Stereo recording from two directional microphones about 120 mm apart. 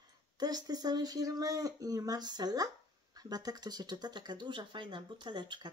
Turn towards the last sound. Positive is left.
turn(degrees=-40)  # may be behind; listen again after turning